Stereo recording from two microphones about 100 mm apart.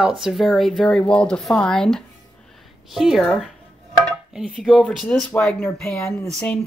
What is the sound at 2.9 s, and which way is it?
Speech, 5° right (ahead or behind).